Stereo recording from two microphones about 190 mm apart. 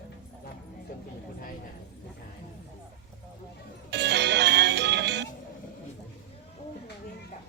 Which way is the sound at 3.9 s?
65° right (ahead or behind).